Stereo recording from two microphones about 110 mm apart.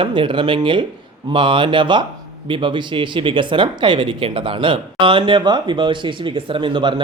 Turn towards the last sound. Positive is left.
turn(degrees=-45)  # may be behind; listen again after turning